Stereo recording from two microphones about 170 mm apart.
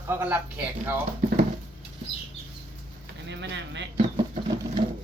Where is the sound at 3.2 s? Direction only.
90° right.